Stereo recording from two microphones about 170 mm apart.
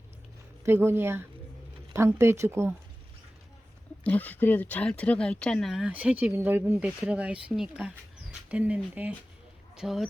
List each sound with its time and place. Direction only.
0.6 s speech: 15° right (ahead or behind)
4.0 s speech: 10° left (ahead or behind)